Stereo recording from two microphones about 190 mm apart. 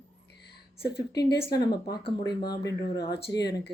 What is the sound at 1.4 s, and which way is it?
Speech, 20° left (ahead or behind).